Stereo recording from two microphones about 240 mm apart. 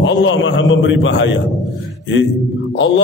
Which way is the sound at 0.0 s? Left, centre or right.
Left.